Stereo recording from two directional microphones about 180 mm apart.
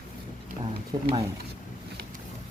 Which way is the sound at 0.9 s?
20° right (ahead or behind).